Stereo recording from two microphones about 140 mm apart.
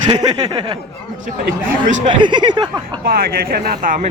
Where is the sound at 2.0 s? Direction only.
35° right (ahead or behind).